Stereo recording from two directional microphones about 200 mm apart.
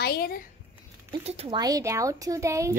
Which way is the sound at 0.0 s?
50° left (ahead or behind).